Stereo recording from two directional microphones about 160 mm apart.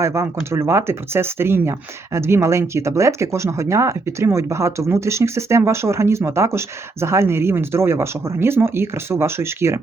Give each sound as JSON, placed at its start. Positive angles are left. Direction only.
{"t": 0.0, "sound": "speech", "side_deg": -15}